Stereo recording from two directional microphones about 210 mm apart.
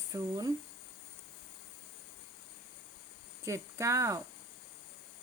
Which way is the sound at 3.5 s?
15° right (ahead or behind).